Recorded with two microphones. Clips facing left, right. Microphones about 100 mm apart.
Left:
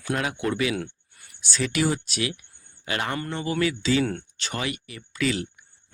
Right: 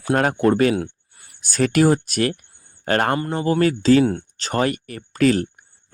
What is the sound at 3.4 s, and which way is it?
Speech, 45° right (ahead or behind).